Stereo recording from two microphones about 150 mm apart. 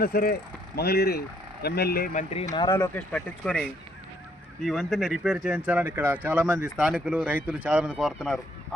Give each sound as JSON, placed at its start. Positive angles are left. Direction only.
{"t": 0.0, "sound": "speech", "side_deg": 85}
{"t": 2.1, "sound": "speech", "side_deg": 50}
{"t": 2.7, "sound": "speech", "side_deg": 15}